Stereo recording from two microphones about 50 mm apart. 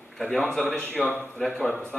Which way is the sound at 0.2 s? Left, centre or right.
Centre.